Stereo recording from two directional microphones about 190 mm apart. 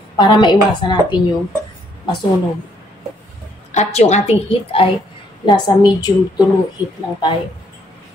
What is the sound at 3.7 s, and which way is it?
A woman's voice, 35° left (ahead or behind).